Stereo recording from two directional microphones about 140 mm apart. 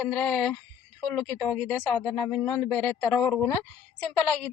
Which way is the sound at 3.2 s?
5° left (ahead or behind).